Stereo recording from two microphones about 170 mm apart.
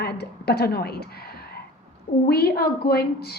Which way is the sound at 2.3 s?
65° left (ahead or behind).